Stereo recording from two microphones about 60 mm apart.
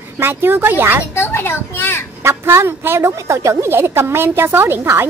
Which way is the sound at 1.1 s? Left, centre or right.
Left.